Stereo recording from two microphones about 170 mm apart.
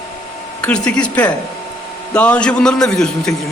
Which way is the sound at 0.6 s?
5° left (ahead or behind).